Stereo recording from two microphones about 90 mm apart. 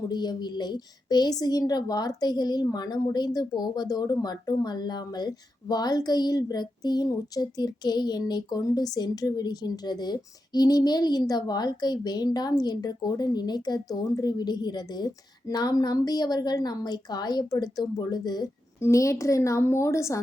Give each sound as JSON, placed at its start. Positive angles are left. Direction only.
{"t": 0.1, "sound": "a woman's voice", "side_deg": 50}
{"t": 18.8, "sound": "a woman's voice", "side_deg": 35}